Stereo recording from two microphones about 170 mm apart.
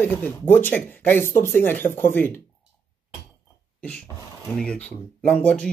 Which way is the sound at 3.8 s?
5° left (ahead or behind).